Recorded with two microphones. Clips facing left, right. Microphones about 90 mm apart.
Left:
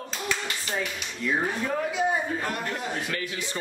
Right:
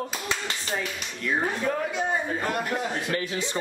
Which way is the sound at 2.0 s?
Centre (ahead or behind).